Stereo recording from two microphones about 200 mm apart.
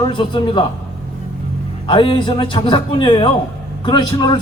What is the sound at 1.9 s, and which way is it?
A man's voice, 25° left (ahead or behind).